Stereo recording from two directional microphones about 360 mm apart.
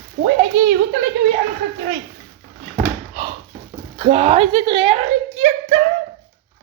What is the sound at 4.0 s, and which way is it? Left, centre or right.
Speech, centre.